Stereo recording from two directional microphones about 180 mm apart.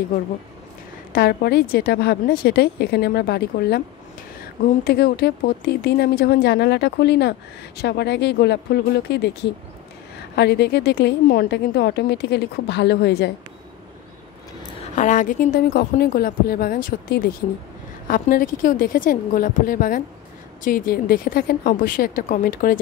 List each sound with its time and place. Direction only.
1.1 s speech: 60° left (ahead or behind)
4.8 s a woman's voice: 60° left (ahead or behind)
15.0 s a woman's voice: 45° left (ahead or behind)